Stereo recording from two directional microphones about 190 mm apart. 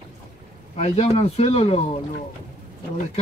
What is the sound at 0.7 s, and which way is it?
Speech, 35° left (ahead or behind).